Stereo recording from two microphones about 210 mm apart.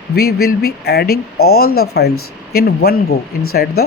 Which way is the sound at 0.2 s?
50° left (ahead or behind).